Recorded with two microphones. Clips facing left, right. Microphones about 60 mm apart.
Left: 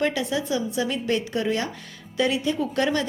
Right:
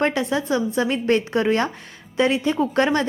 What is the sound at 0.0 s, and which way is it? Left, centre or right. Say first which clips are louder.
A woman's voice: right 3 dB; right.